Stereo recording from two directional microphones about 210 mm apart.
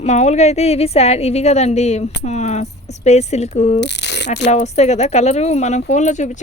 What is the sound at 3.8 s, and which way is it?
Rattle, 55° left (ahead or behind).